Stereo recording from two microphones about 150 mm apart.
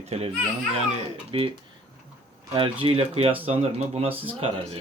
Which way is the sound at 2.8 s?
40° right (ahead or behind).